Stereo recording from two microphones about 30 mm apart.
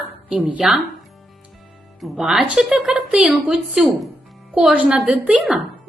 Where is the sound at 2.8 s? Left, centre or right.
Right.